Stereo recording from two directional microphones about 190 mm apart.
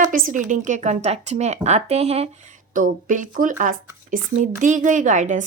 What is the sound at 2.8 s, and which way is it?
A woman's voice, 45° right (ahead or behind).